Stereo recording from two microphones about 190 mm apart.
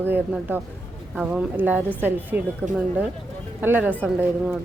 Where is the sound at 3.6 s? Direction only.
10° right (ahead or behind).